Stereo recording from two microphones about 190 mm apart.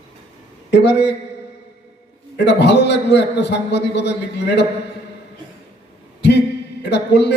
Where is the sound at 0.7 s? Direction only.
60° left (ahead or behind).